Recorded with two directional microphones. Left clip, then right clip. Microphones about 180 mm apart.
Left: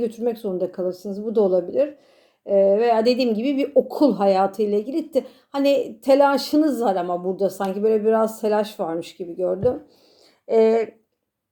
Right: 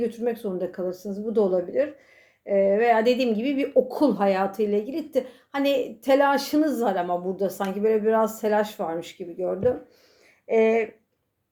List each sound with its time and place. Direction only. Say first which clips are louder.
0.0 s a woman's voice: left 3 dB; 35° left (ahead or behind)